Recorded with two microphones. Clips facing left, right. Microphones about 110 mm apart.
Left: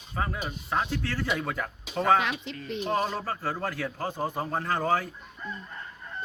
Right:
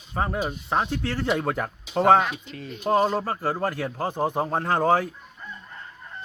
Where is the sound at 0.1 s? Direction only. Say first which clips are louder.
Right 5 dB; 25° right (ahead or behind).